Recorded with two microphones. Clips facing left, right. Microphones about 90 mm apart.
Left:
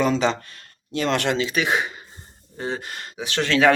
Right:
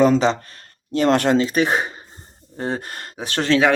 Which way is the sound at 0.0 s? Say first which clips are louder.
Right 5 dB; 35° right (ahead or behind).